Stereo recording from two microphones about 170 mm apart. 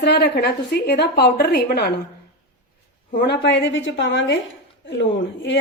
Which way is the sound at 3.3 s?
90° left.